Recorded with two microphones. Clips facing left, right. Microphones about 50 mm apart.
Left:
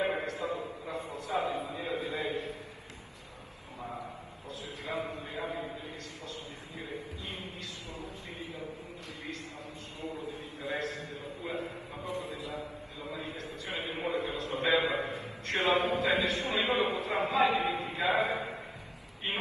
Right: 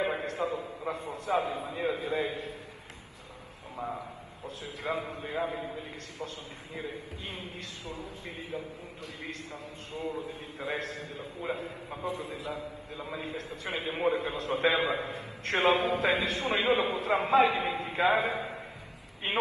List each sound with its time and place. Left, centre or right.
0.0 s a sound: right
0.3 s a sound: right
0.8 s a man's voice: right
4.8 s a man's voice: right
8.0 s a man's voice: right
9.9 s a man's voice: right
13.1 s a man's voice: right